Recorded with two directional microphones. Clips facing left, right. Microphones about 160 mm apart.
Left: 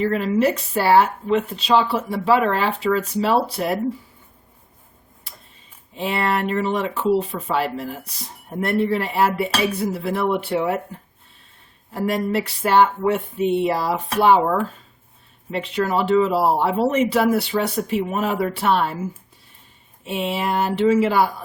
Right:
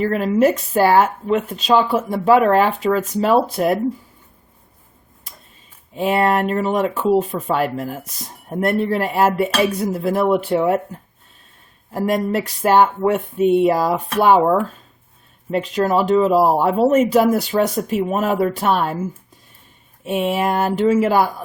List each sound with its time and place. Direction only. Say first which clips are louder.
0.0 s speech: right 3 dB; 45° right (ahead or behind)
6.0 s speech: right 5 dB; 45° right (ahead or behind)
11.9 s speech: right 2 dB; 45° right (ahead or behind)
15.4 s speech: right 4 dB; 45° right (ahead or behind)
20.1 s speech: right 4 dB; 50° right (ahead or behind)